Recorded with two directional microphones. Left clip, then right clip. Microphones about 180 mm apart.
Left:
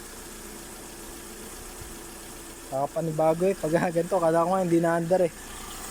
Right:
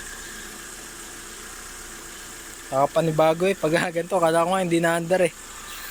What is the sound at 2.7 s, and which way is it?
Speech, centre (ahead or behind).